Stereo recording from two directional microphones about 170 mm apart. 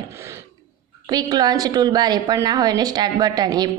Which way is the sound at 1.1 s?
25° right (ahead or behind).